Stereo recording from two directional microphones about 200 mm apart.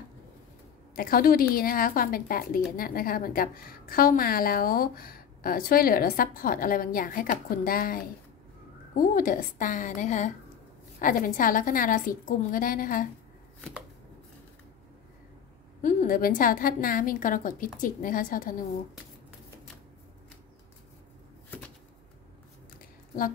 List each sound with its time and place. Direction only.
0.9 s a woman's voice: 45° left (ahead or behind)
15.8 s a woman's voice: 40° left (ahead or behind)
21.5 s a sound: 10° left (ahead or behind)